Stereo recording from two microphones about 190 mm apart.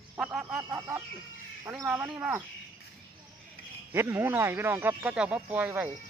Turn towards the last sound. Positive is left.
turn(degrees=-10)  # may be behind; listen again after turning